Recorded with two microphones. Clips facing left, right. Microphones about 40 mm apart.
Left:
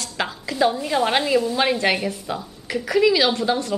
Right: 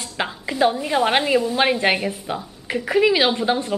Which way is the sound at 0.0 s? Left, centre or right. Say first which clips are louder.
Right 1 dB; right.